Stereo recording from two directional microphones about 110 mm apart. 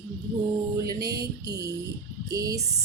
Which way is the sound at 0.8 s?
30° right (ahead or behind).